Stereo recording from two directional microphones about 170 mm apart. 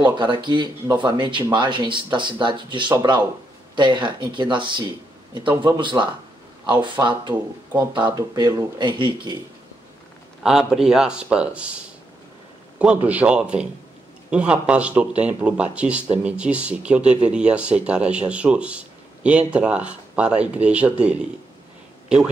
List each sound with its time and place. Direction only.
0.0 s speech: 25° right (ahead or behind)
10.4 s speech: 5° right (ahead or behind)